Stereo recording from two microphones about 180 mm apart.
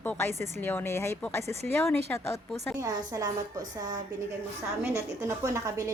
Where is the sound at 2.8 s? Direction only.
20° right (ahead or behind).